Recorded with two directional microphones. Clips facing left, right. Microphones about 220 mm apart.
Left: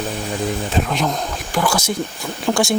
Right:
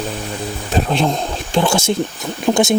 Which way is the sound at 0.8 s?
30° right (ahead or behind).